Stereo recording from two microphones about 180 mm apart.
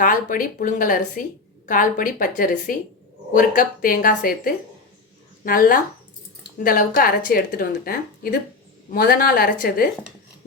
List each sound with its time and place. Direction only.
0.0 s speech: 50° left (ahead or behind)